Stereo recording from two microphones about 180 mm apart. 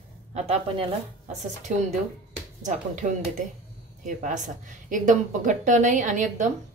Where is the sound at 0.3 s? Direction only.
35° right (ahead or behind).